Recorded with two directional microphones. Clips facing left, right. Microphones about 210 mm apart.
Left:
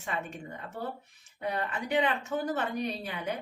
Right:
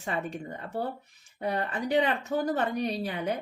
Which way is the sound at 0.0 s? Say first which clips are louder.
Right 4 dB; 35° right (ahead or behind).